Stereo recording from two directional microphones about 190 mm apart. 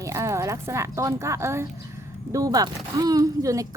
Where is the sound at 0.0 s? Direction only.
15° right (ahead or behind).